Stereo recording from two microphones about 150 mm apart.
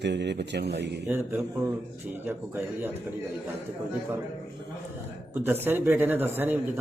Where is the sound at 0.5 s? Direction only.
90° right.